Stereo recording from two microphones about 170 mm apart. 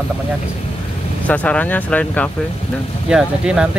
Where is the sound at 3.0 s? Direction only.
5° right (ahead or behind).